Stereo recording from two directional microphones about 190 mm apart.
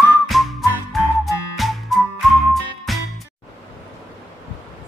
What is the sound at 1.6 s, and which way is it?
Music, centre (ahead or behind).